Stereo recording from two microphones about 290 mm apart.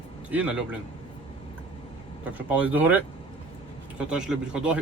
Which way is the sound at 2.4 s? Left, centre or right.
Centre.